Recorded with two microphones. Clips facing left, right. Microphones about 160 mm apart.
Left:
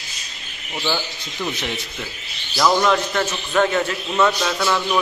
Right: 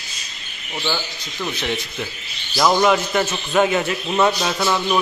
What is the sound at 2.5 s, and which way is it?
A man's voice, 10° right (ahead or behind).